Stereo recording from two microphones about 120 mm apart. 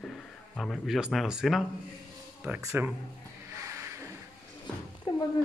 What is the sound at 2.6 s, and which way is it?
Speech, 25° right (ahead or behind).